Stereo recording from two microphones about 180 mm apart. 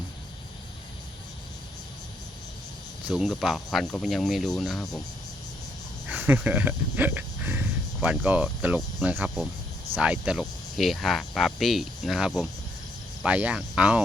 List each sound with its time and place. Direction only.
3.1 s speech: centre (ahead or behind)
6.1 s speech: 10° right (ahead or behind)